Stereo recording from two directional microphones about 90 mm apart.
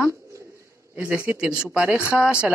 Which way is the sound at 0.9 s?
20° right (ahead or behind).